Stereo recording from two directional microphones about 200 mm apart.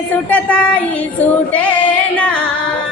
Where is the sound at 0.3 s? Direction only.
5° left (ahead or behind).